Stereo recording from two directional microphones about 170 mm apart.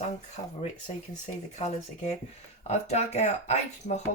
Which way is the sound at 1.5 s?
40° left (ahead or behind).